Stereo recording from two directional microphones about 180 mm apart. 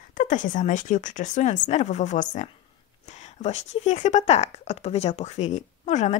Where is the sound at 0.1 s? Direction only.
45° left (ahead or behind).